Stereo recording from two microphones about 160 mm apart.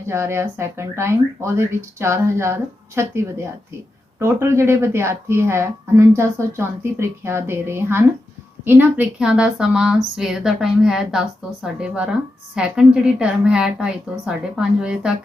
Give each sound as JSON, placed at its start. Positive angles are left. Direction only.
{"t": 0.0, "sound": "a woman's voice", "side_deg": -15}